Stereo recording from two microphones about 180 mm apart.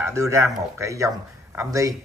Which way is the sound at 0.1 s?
15° right (ahead or behind).